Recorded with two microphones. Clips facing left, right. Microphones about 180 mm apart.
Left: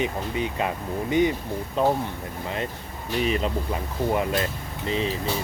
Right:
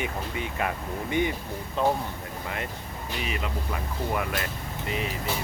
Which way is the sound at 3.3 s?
30° left (ahead or behind).